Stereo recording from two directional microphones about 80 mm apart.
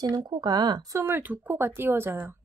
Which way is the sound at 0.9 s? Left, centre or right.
Right.